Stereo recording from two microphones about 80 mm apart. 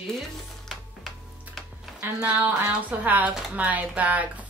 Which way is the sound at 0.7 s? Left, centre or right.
Centre.